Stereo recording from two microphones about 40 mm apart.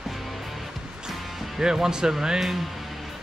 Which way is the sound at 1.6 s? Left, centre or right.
Centre.